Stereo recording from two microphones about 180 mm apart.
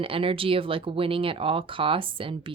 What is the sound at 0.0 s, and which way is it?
Speech, 30° right (ahead or behind).